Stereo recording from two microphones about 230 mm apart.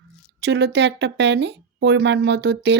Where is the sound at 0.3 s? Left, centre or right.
Right.